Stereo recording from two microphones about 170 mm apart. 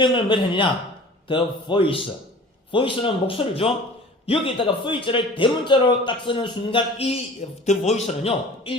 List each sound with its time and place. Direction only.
0.0 s a man's voice: 30° left (ahead or behind)